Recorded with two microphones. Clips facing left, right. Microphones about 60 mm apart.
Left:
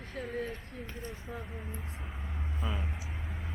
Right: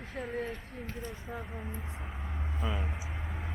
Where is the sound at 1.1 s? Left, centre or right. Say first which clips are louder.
Right 1 dB; centre.